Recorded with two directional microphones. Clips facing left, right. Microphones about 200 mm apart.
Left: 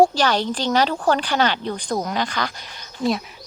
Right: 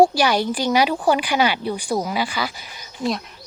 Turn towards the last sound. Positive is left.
turn(degrees=0)  # may be behind; listen again after turning